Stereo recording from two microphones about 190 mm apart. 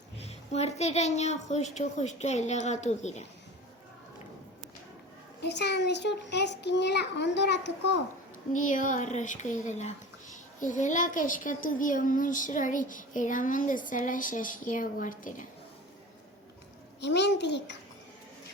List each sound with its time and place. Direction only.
0.3 s a woman's voice: 35° left (ahead or behind)
5.4 s a child's voice: 60° left (ahead or behind)
8.5 s speech: 45° left (ahead or behind)
17.0 s a child's voice: 65° left (ahead or behind)